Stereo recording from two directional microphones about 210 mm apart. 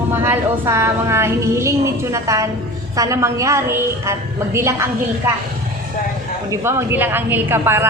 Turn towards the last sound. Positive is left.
turn(degrees=-10)  # may be behind; listen again after turning